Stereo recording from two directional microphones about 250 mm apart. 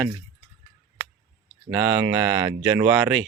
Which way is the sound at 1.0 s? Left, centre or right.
Centre.